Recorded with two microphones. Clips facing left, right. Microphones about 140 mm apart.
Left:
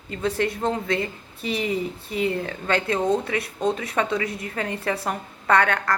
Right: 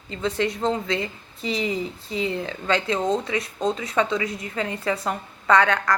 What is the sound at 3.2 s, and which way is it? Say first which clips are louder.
A woman's voice: left 1 dB; 60° left (ahead or behind).